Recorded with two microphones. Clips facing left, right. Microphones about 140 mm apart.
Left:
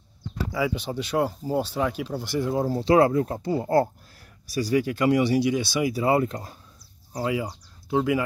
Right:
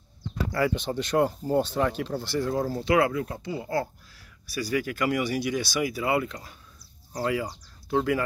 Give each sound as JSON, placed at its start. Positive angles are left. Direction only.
{"t": 0.5, "sound": "speech", "side_deg": 5}
{"t": 4.6, "sound": "speech", "side_deg": 30}
{"t": 7.1, "sound": "speech", "side_deg": 15}